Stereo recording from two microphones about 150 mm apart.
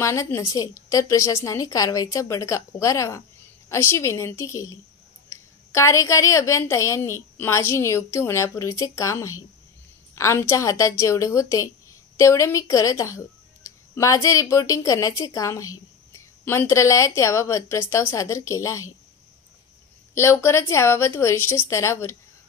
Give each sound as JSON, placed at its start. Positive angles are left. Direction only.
{"t": 0.0, "sound": "speech", "side_deg": 20}
{"t": 20.2, "sound": "a woman's voice", "side_deg": 15}